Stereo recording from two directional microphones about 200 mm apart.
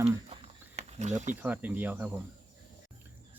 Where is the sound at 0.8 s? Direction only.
35° right (ahead or behind).